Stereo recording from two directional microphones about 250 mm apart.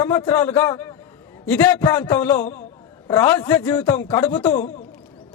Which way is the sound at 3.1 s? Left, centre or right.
Centre.